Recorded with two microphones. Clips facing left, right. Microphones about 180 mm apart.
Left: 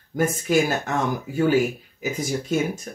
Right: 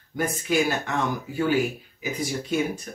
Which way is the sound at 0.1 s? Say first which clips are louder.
Left 4 dB; 45° left (ahead or behind).